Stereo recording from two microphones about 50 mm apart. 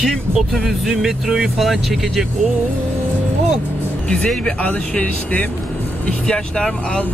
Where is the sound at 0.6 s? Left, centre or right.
Centre.